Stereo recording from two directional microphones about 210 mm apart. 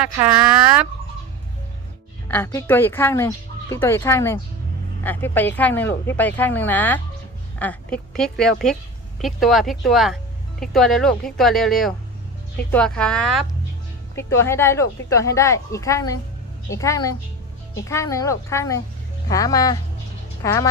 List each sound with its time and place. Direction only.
2.2 s speech: 10° left (ahead or behind)